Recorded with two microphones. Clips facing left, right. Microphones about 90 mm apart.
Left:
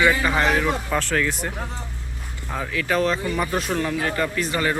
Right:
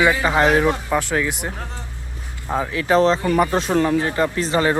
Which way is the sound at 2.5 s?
25° right (ahead or behind).